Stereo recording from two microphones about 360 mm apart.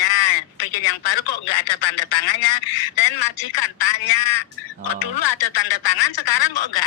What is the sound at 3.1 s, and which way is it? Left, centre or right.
Speech, left.